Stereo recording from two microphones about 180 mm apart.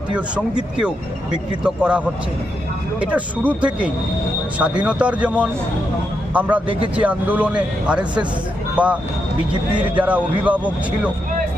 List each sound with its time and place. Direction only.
0.1 s a man's voice: 5° right (ahead or behind)
1.6 s a man's voice: 5° right (ahead or behind)
3.0 s a man's voice: 10° right (ahead or behind)
6.3 s a man's voice: 5° right (ahead or behind)
6.7 s speech: 30° right (ahead or behind)
6.9 s a man's voice: 10° right (ahead or behind)